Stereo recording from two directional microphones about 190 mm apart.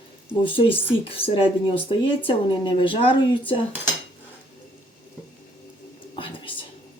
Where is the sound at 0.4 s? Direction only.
25° left (ahead or behind).